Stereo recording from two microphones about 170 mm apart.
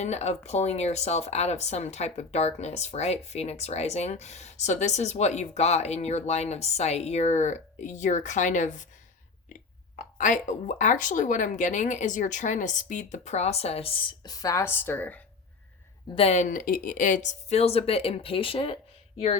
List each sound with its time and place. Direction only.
0.0 s speech: 40° left (ahead or behind); by 15.2 s 10° left (ahead or behind)
16.1 s speech: 40° left (ahead or behind)